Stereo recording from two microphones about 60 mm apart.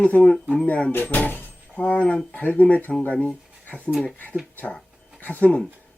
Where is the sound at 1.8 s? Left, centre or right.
Left.